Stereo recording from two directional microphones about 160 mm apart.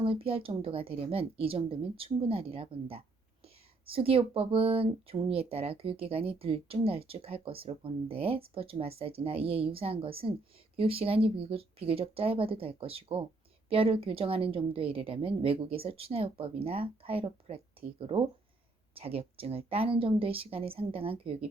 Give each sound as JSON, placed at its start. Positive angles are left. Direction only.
{"t": 0.0, "sound": "speech", "side_deg": -35}